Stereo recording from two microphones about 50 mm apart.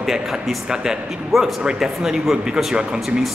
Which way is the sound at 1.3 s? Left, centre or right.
Centre.